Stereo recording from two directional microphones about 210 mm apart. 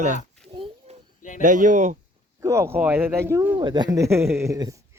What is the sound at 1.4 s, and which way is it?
Speech, 40° right (ahead or behind).